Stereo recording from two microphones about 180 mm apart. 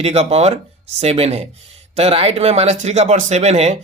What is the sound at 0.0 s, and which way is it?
Speech, 35° right (ahead or behind).